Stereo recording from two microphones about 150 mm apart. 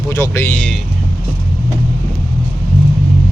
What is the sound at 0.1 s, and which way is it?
Speech, 20° left (ahead or behind).